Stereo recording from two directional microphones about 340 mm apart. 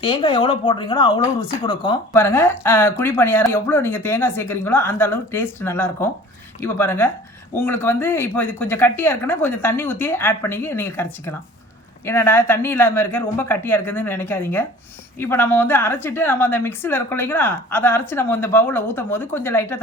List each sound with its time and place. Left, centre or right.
0.0 s a woman's voice: centre